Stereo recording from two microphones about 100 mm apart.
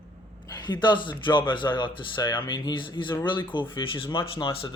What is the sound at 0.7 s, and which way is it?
A man's voice, 50° left (ahead or behind).